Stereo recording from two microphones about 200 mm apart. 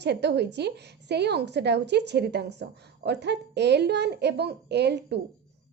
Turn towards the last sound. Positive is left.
turn(degrees=-55)  # may be behind; listen again after turning